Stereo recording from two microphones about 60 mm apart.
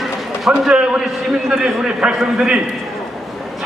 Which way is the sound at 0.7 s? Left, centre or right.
Centre.